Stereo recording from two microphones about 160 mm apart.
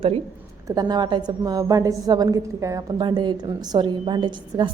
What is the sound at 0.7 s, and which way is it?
A woman's voice, 25° right (ahead or behind).